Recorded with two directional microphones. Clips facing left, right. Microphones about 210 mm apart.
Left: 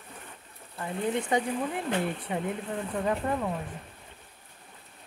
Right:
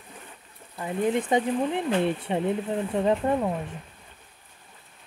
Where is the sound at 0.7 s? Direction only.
20° right (ahead or behind).